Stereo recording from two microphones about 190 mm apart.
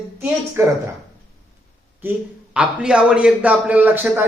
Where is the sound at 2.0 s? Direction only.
10° right (ahead or behind).